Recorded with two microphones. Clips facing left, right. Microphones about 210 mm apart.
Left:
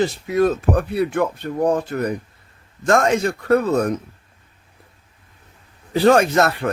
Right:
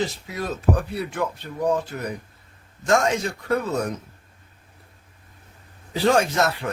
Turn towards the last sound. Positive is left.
turn(degrees=60)  # may be behind; listen again after turning